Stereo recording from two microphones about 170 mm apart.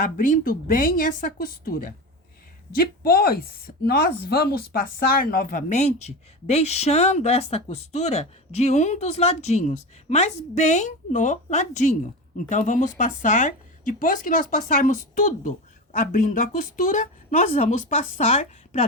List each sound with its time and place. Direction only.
0.0 s a woman's voice: 55° left (ahead or behind)